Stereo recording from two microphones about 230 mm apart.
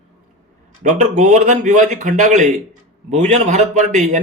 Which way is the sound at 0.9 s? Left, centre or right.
Right.